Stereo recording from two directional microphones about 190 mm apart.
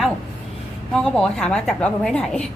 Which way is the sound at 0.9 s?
5° left (ahead or behind).